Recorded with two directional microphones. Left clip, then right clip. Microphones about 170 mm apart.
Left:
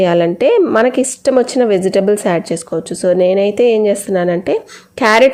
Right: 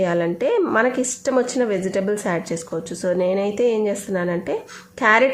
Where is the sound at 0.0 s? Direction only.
35° left (ahead or behind).